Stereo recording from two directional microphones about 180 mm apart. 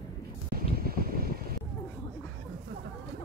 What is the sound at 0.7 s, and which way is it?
Vehicle, 55° right (ahead or behind).